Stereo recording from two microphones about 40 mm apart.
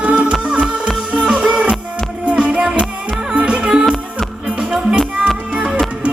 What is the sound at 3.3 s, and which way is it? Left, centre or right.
Music, right.